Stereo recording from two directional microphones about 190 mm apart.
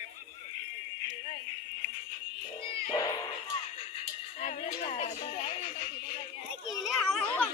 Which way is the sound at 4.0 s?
35° left (ahead or behind).